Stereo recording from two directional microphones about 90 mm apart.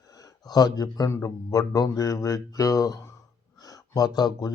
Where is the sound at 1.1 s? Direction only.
40° left (ahead or behind).